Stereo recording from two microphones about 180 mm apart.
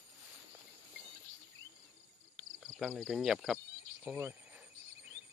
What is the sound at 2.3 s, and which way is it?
Cricket, centre (ahead or behind).